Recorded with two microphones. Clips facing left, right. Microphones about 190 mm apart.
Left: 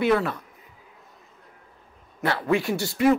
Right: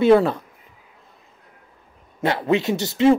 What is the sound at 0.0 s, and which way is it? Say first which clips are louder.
Speech: right 7 dB; 30° right (ahead or behind).